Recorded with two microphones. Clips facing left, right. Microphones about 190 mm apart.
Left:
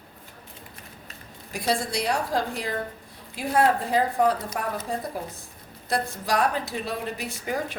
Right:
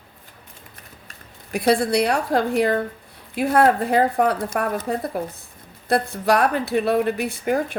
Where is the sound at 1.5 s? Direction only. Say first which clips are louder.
Right 8 dB; 65° right (ahead or behind).